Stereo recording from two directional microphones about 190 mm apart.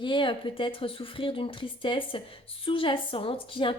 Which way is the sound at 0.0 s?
25° left (ahead or behind).